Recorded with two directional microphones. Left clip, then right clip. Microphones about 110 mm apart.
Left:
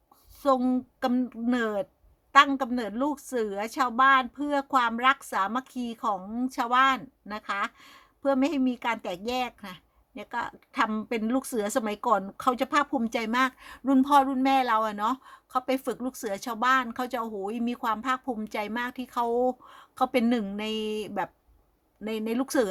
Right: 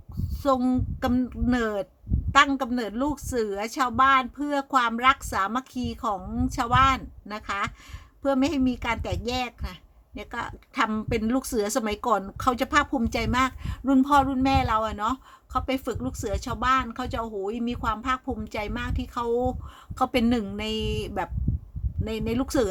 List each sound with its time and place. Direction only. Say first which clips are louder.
0.4 s a woman's voice: right 1 dB; 20° left (ahead or behind)
20.0 s a woman's voice: right 1 dB; 20° left (ahead or behind)